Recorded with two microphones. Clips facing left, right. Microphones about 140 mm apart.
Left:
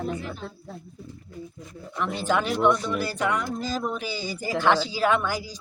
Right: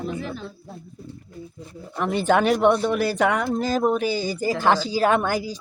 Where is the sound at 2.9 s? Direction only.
70° right (ahead or behind).